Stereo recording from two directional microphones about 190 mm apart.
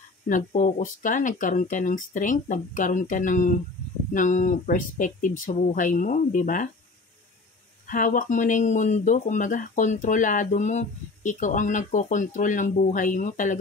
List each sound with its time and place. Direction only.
0.3 s speech: 40° left (ahead or behind)
7.8 s speech: 45° left (ahead or behind)